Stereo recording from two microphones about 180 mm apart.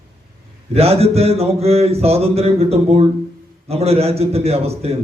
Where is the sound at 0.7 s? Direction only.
35° right (ahead or behind).